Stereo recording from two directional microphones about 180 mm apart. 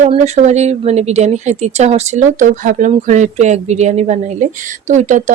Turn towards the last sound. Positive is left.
turn(degrees=-40)  # may be behind; listen again after turning